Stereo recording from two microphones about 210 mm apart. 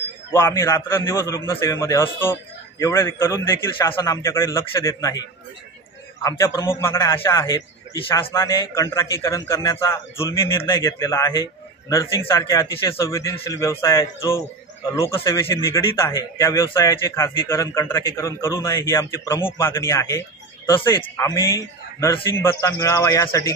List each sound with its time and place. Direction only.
0.3 s a man's voice: 10° left (ahead or behind)
6.2 s a man's voice: 15° left (ahead or behind)